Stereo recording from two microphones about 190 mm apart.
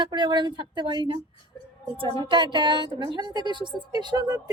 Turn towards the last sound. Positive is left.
turn(degrees=-20)  # may be behind; listen again after turning